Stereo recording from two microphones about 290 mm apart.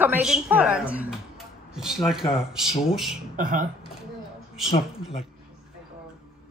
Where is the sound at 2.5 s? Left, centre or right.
Centre.